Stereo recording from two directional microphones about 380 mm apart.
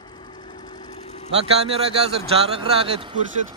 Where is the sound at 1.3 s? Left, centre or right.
Centre.